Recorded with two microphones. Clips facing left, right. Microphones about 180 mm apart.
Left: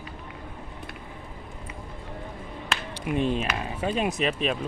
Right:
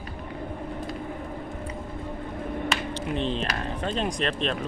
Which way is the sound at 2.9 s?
10° left (ahead or behind).